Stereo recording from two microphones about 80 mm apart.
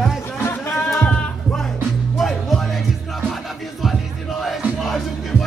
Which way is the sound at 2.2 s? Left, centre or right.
Centre.